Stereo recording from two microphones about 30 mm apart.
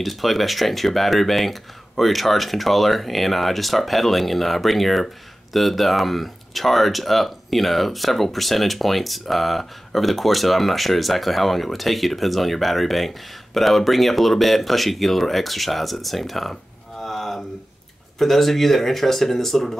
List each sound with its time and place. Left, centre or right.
0.0 s speech: centre
17.0 s a sound: centre
18.2 s speech: centre